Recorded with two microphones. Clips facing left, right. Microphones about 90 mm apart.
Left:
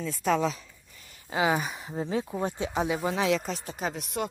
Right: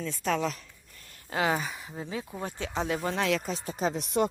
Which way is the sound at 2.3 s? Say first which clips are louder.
Left 4 dB; 20° left (ahead or behind).